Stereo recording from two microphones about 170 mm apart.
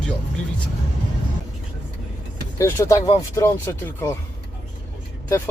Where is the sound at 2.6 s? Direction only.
15° left (ahead or behind).